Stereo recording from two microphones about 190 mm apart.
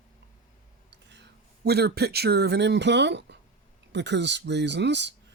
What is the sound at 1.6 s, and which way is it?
Speech, 55° right (ahead or behind).